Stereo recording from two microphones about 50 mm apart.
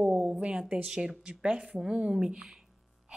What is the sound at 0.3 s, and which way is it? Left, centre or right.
A woman's voice, right.